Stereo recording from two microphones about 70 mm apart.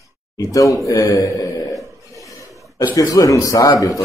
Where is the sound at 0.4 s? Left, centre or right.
Left.